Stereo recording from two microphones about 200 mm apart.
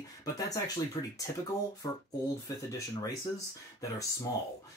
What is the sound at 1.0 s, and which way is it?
Speech, 25° left (ahead or behind).